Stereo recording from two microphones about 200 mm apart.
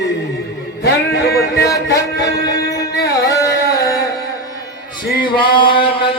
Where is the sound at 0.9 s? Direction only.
55° left (ahead or behind).